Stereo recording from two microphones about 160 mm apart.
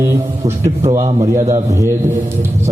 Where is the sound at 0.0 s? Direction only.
15° right (ahead or behind).